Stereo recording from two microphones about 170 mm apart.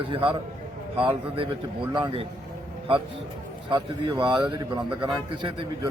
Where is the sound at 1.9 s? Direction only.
30° right (ahead or behind).